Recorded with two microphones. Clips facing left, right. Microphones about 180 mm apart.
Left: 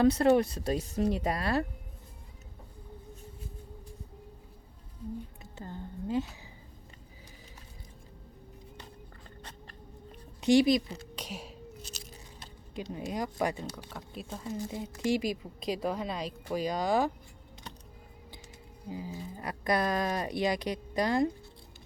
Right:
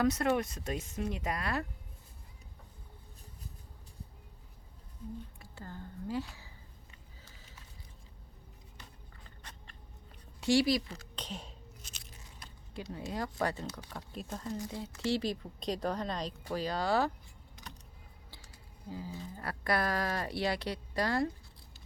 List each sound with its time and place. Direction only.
0.0 s speech: 30° left (ahead or behind)
5.4 s speech: 20° left (ahead or behind)
9.4 s cat: 30° left (ahead or behind)
10.1 s a sound: 20° left (ahead or behind)
10.9 s a sound: 5° left (ahead or behind)
11.8 s biting: 35° left (ahead or behind)
12.9 s speech: 15° left (ahead or behind)
13.7 s speech: 5° left (ahead or behind)
14.7 s speech: 15° left (ahead or behind)
18.9 s speech: 15° left (ahead or behind)